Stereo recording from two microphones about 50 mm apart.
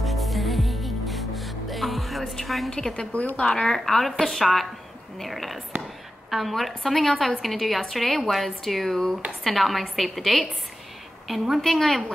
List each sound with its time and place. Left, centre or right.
0.0 s music: centre
2.7 s a woman's voice: centre
3.2 s speech: left
3.4 s a woman's voice: centre
3.7 s a woman's voice: centre